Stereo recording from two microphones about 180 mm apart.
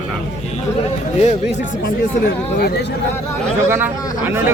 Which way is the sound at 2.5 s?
60° left (ahead or behind).